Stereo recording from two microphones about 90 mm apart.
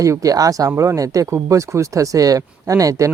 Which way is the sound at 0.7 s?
30° right (ahead or behind).